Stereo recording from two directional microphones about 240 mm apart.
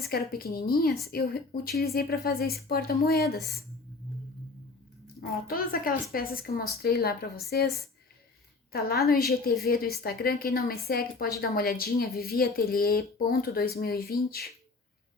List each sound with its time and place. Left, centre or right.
0.0 s a woman's voice: left
5.5 s a woman's voice: left
8.7 s a woman's voice: left